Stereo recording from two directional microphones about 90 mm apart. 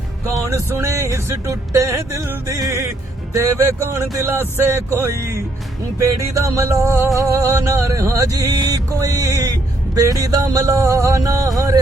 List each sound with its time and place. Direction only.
0.4 s music: 35° right (ahead or behind)